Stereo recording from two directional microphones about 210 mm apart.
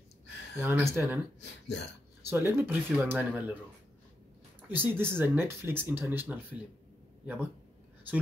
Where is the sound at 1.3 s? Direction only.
55° left (ahead or behind).